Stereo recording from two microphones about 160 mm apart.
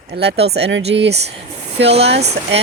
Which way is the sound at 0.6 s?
90° right.